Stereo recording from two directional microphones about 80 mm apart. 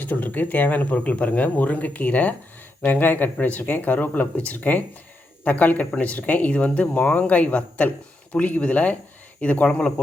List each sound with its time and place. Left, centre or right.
0.0 s speech: left